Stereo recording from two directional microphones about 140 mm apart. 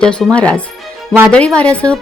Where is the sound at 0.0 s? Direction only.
5° left (ahead or behind).